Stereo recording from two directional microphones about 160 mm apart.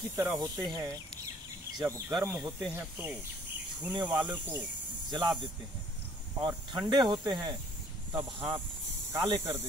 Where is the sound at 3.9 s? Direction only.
30° right (ahead or behind).